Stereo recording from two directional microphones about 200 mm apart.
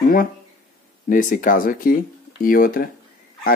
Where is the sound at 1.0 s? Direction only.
40° left (ahead or behind).